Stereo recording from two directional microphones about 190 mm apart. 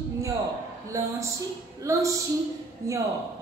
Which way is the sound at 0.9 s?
15° right (ahead or behind).